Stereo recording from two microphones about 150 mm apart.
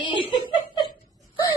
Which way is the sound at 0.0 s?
30° left (ahead or behind).